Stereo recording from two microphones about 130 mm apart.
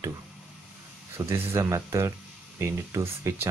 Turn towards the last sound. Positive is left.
turn(degrees=-20)  # may be behind; listen again after turning